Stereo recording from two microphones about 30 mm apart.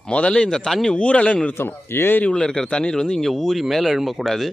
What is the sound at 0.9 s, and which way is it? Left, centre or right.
Speech, left.